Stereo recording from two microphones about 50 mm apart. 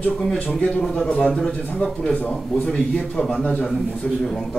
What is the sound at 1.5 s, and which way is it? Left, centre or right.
Speech, left.